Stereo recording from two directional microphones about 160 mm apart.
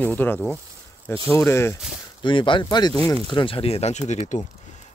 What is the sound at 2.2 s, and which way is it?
Speech, 30° left (ahead or behind).